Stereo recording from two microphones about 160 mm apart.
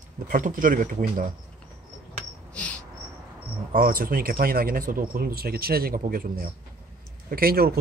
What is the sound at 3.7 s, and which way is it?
Speech, 65° right (ahead or behind).